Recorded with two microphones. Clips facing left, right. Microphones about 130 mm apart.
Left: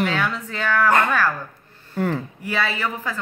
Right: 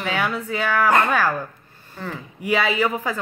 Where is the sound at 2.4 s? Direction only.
15° right (ahead or behind).